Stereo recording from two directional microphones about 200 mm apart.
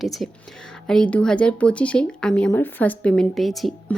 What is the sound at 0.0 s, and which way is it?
Speech, centre (ahead or behind).